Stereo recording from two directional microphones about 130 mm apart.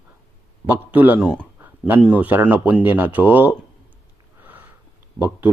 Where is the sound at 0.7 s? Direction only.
15° right (ahead or behind).